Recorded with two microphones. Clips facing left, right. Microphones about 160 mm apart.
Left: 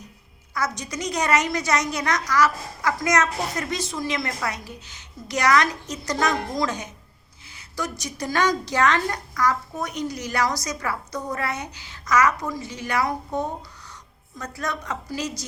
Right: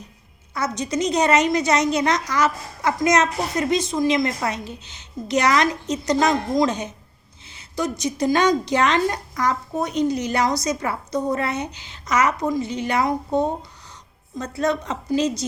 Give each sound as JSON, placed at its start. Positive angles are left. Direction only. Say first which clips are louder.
{"t": 0.5, "sound": "a woman's voice", "louder": "right 4 dB", "side_deg": -25}